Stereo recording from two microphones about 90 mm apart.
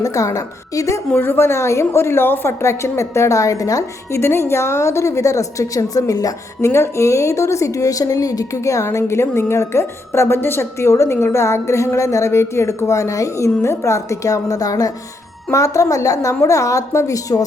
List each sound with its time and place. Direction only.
0.0 s a woman's voice: 35° left (ahead or behind)
1.1 s a woman's voice: 25° left (ahead or behind); by 6.7 s 40° left (ahead or behind)
6.7 s a woman's voice: 30° left (ahead or behind)